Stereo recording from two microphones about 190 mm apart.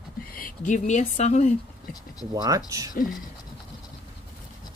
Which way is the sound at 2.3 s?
20° right (ahead or behind).